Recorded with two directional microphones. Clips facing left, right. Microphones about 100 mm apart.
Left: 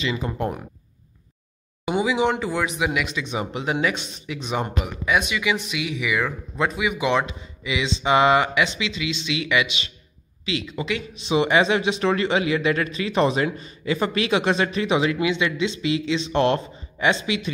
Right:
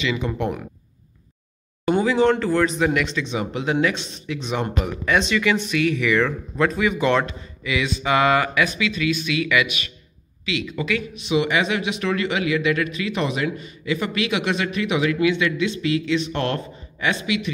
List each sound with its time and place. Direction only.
0.0 s speech: 35° left (ahead or behind)
1.9 s a man's voice: 10° left (ahead or behind); by 17.5 s 30° left (ahead or behind)